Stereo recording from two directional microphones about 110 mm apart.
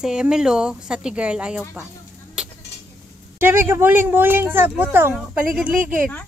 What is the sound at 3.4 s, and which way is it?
Speech, 20° right (ahead or behind).